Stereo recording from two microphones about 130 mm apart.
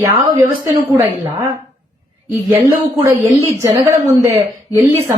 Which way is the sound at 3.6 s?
25° right (ahead or behind).